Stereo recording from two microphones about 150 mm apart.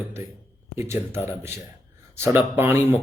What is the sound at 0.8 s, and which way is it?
Speech, 15° right (ahead or behind).